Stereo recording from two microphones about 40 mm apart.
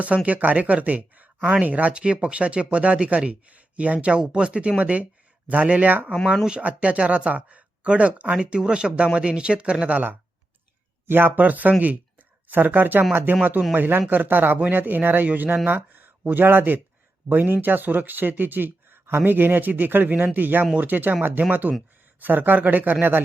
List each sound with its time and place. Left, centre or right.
0.0 s speech: right
8.4 s speech: right
11.0 s speech: right
11.3 s speech: right
19.0 s speech: right
19.3 s speech: right